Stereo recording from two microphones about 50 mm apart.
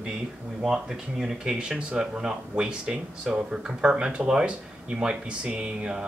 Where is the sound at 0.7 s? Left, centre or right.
Centre.